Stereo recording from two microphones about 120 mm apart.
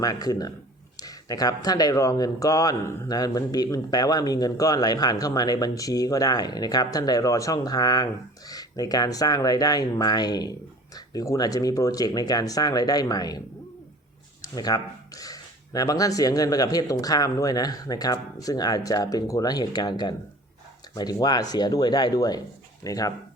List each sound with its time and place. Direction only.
0.0 s speech: 30° left (ahead or behind)
14.4 s speech: 30° left (ahead or behind)